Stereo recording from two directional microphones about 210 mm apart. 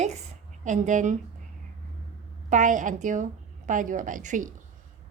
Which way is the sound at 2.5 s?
35° right (ahead or behind).